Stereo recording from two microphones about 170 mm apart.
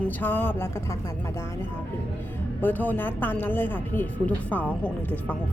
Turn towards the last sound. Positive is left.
turn(degrees=10)  # may be behind; listen again after turning